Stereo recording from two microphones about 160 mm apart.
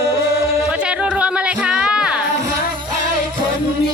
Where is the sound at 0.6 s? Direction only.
5° right (ahead or behind).